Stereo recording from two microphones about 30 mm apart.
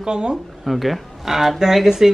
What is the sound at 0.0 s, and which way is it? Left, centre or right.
Speech, right.